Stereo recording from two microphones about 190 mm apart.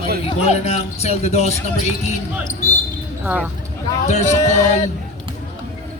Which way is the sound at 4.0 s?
35° left (ahead or behind).